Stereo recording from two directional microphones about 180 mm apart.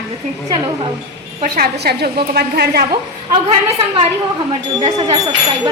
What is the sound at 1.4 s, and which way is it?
A woman's voice, 60° right (ahead or behind).